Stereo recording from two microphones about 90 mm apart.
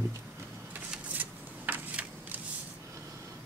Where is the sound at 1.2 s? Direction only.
20° right (ahead or behind).